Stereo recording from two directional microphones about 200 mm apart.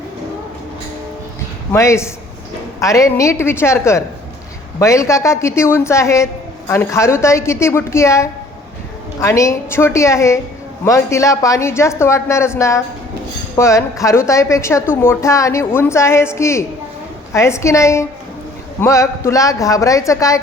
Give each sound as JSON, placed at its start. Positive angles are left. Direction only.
{"t": 1.7, "sound": "a woman's voice", "side_deg": 15}